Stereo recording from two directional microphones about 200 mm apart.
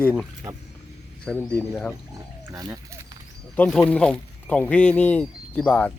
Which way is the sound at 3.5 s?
5° left (ahead or behind).